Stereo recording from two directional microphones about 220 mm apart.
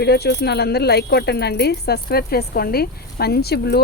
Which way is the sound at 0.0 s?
50° left (ahead or behind).